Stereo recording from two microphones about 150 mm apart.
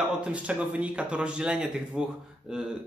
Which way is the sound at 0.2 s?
10° right (ahead or behind).